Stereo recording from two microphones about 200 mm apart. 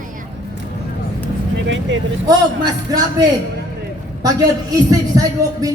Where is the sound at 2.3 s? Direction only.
20° right (ahead or behind).